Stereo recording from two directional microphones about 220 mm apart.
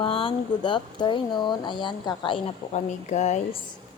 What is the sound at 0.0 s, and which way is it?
Speech, 25° left (ahead or behind).